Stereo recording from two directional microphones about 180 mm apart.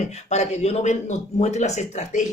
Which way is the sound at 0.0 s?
40° left (ahead or behind).